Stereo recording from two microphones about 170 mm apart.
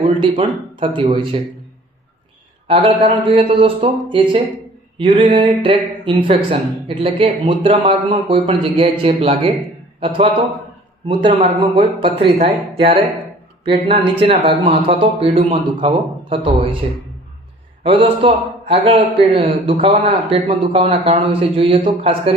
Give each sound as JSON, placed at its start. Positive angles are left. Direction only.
{"t": 0.2, "sound": "speech", "side_deg": -30}
{"t": 2.6, "sound": "a man's voice", "side_deg": -30}
{"t": 17.8, "sound": "speech", "side_deg": -35}